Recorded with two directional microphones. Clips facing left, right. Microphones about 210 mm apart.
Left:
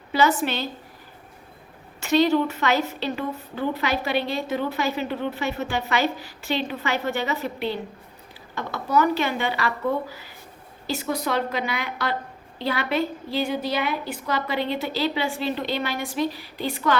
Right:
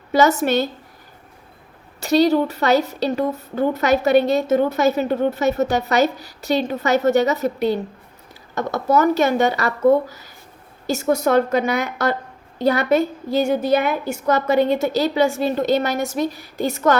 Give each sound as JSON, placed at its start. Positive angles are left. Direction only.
{"t": 0.1, "sound": "a woman's voice", "side_deg": -45}
{"t": 2.0, "sound": "a woman's voice", "side_deg": -40}